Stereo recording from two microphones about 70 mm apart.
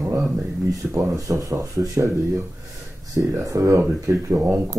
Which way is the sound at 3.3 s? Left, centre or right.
Right.